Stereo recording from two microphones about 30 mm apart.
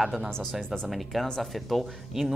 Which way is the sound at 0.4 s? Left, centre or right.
Centre.